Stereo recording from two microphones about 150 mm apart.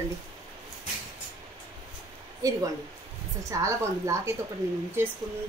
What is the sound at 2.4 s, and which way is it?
Speech, 20° right (ahead or behind).